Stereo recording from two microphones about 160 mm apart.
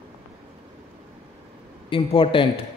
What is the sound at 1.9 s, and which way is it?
Speech, 35° left (ahead or behind).